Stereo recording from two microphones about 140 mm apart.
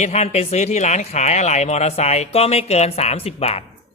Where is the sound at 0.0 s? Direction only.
50° left (ahead or behind).